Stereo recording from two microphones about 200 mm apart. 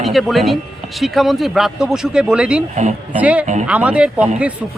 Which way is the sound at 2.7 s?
35° right (ahead or behind).